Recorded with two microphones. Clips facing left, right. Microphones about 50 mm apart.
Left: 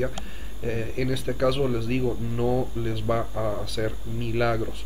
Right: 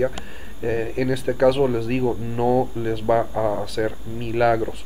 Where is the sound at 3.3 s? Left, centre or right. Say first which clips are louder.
Right 6 dB; right.